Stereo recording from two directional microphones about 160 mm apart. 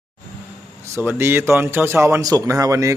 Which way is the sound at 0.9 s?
15° right (ahead or behind).